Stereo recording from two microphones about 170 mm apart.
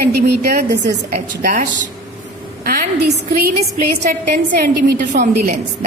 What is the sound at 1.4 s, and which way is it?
A woman's voice, 50° right (ahead or behind).